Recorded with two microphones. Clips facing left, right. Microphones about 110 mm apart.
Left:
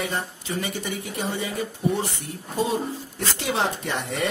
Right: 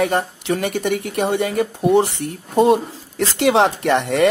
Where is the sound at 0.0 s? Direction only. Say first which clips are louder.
Right 10 dB; 65° right (ahead or behind).